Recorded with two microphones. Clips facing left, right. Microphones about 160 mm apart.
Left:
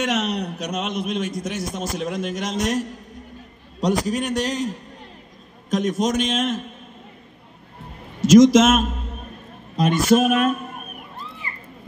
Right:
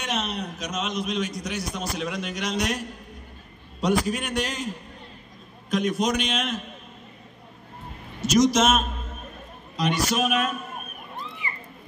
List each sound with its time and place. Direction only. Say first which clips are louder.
0.0 s a man's voice: left 6 dB; 85° left; by 2.8 s 45° left (ahead or behind)
3.8 s a man's voice: left 3 dB; 40° left (ahead or behind)
8.2 s a man's voice: left 8 dB; 90° left
9.8 s a man's voice: left 7 dB; 50° left (ahead or behind)